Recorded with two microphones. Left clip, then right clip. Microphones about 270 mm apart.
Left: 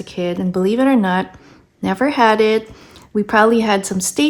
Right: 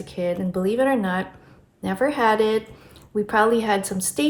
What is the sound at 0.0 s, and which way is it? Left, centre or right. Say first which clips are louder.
Speech: left 3 dB; left.